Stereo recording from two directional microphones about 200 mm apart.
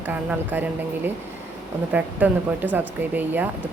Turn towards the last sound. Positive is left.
turn(degrees=-10)  # may be behind; listen again after turning